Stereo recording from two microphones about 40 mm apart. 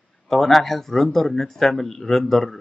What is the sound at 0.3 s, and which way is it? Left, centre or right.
Speech, centre.